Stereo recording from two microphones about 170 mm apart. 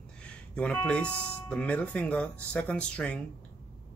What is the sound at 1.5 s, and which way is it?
Speech, 5° left (ahead or behind).